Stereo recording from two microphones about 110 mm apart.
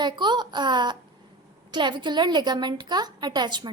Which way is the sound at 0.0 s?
40° right (ahead or behind).